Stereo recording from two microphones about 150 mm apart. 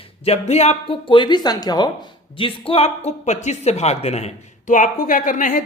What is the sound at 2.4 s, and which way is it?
Speech, 40° left (ahead or behind).